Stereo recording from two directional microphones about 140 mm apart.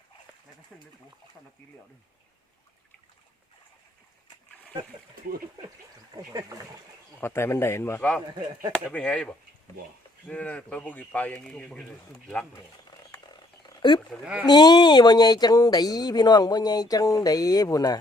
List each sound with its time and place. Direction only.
6.1 s speech: 25° right (ahead or behind)
7.2 s speech: 15° left (ahead or behind)
13.7 s a sound: 30° left (ahead or behind)
14.4 s speech: 30° left (ahead or behind)